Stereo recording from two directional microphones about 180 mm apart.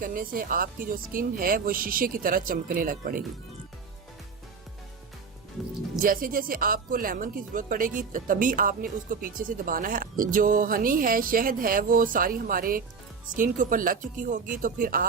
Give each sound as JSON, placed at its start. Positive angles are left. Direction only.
{"t": 0.0, "sound": "speech", "side_deg": -50}
{"t": 6.0, "sound": "speech", "side_deg": -50}